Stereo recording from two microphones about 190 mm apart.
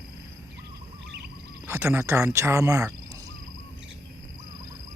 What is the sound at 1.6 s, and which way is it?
Speech, 15° right (ahead or behind).